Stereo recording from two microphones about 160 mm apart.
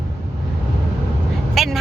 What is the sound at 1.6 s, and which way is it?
Vehicle, centre (ahead or behind).